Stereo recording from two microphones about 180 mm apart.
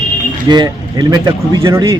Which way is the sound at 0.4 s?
25° right (ahead or behind).